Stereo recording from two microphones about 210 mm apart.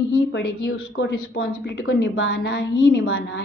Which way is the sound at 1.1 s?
55° left (ahead or behind).